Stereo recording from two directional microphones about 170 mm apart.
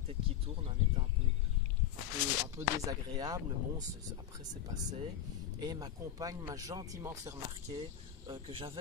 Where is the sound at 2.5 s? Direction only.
20° right (ahead or behind).